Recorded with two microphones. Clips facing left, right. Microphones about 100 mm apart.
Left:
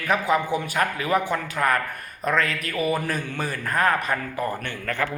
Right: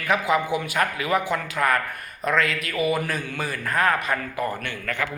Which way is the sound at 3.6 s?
10° left (ahead or behind).